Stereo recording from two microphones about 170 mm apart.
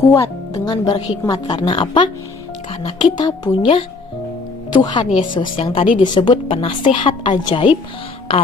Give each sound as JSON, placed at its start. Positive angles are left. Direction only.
{"t": 0.0, "sound": "speech", "side_deg": 15}